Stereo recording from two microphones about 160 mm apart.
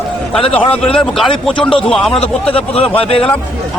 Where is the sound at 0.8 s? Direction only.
5° left (ahead or behind).